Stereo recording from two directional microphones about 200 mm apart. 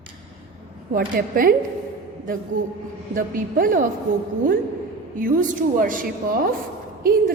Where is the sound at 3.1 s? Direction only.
45° right (ahead or behind).